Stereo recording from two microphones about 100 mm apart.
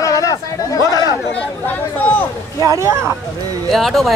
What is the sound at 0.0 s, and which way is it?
Chatter, 35° left (ahead or behind).